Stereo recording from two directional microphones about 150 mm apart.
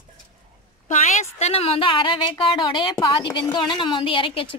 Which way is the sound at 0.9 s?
45° left (ahead or behind).